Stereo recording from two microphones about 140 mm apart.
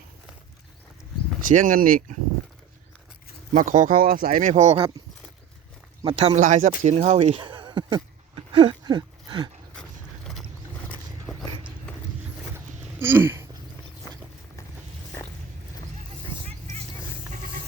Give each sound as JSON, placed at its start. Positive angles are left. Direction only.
{"t": 1.4, "sound": "speech", "side_deg": -75}
{"t": 3.5, "sound": "speech", "side_deg": -70}
{"t": 6.1, "sound": "speech", "side_deg": -45}
{"t": 6.4, "sound": "speech", "side_deg": -70}
{"t": 6.8, "sound": "speech", "side_deg": -55}
{"t": 10.8, "sound": "horse", "side_deg": 10}
{"t": 12.5, "sound": "a sound", "side_deg": -15}